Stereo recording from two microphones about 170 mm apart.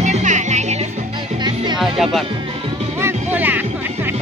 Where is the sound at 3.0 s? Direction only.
15° right (ahead or behind).